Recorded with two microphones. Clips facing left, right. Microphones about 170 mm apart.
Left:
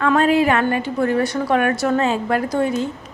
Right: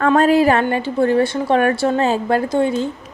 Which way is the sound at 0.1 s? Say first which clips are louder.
Right 3 dB; 40° right (ahead or behind).